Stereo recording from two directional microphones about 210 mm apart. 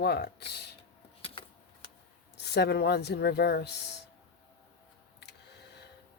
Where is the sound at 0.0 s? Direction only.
50° left (ahead or behind).